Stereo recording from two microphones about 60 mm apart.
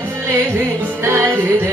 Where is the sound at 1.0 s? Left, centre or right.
Right.